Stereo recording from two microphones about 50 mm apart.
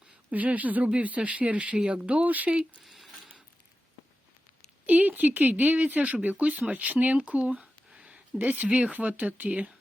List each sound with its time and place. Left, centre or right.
0.3 s speech: right
2.8 s a sound: centre
4.9 s speech: right
8.4 s speech: right